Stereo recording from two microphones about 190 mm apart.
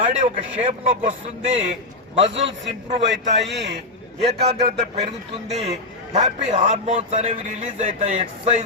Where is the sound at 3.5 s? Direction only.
65° right (ahead or behind).